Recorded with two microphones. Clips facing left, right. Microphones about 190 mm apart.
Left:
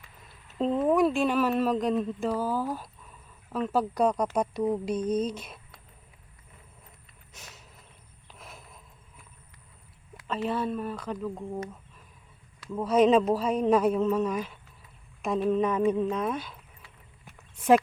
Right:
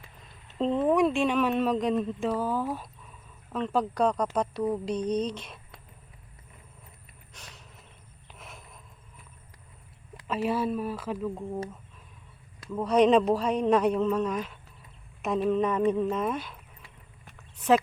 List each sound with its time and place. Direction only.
0.4 s speech: centre (ahead or behind)
7.3 s a sound: 10° left (ahead or behind)
10.2 s speech: 5° right (ahead or behind)
12.7 s speech: 5° left (ahead or behind)